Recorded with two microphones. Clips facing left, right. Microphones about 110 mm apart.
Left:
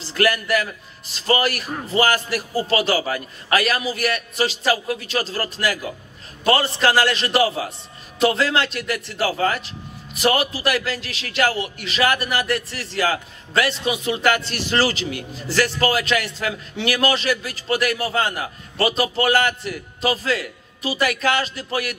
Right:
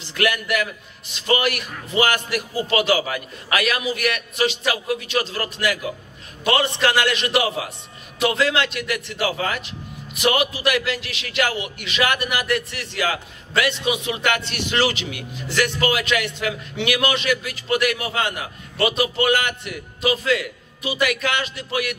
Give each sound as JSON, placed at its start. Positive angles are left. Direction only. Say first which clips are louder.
{"t": 0.0, "sound": "a man's voice", "louder": "left 2 dB", "side_deg": 35}